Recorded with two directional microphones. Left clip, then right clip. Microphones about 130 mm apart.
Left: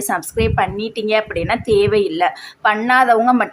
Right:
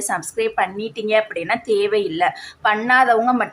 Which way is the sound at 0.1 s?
35° left (ahead or behind).